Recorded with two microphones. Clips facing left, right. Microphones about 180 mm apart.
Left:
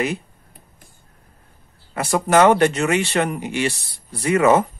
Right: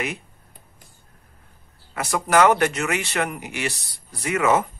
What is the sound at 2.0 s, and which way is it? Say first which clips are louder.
Speech: left 3 dB; 25° left (ahead or behind).